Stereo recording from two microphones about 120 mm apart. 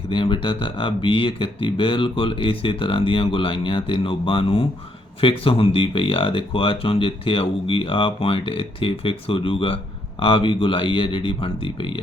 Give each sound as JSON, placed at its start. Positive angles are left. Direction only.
{"t": 0.1, "sound": "speech", "side_deg": 45}